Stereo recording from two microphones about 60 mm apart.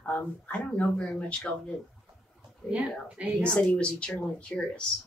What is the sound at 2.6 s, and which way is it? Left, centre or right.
Speech, left.